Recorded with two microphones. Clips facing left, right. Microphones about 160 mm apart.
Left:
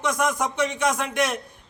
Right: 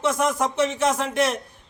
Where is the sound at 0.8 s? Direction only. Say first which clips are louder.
Right 1 dB; 30° right (ahead or behind).